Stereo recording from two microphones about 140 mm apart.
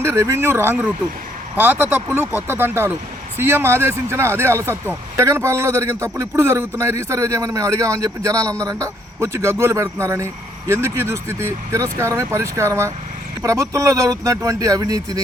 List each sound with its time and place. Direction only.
0.0 s speech: 15° right (ahead or behind)